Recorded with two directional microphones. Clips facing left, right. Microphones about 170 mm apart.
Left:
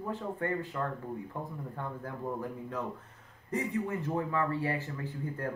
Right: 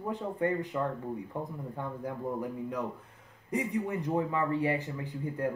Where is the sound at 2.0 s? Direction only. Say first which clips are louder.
Right 3 dB; 15° right (ahead or behind).